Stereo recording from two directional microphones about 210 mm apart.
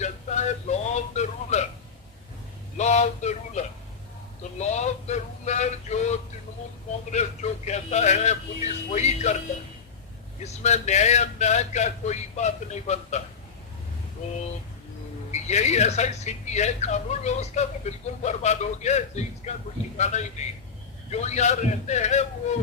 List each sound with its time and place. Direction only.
0.0 s music: 35° left (ahead or behind)
2.7 s a sound: 35° left (ahead or behind)
7.1 s speech: 35° left (ahead or behind)
10.4 s speech: 35° left (ahead or behind)
15.3 s speech: 35° left (ahead or behind)